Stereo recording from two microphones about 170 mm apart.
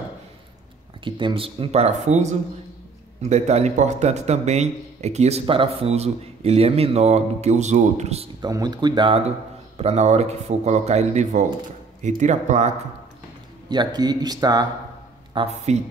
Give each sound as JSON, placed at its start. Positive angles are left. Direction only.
{"t": 1.0, "sound": "speech", "side_deg": -30}
{"t": 8.4, "sound": "speech", "side_deg": -25}
{"t": 9.8, "sound": "speech", "side_deg": -40}
{"t": 13.7, "sound": "speech", "side_deg": -25}